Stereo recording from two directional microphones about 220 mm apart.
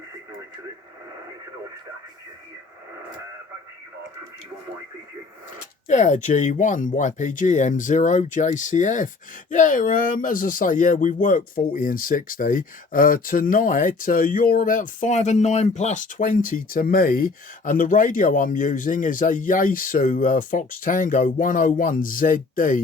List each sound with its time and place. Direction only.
5.9 s speech: 35° left (ahead or behind)